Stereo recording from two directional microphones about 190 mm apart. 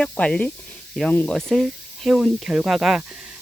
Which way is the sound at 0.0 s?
5° left (ahead or behind).